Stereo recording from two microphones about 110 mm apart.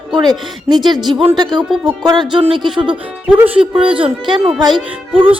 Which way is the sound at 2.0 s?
40° right (ahead or behind).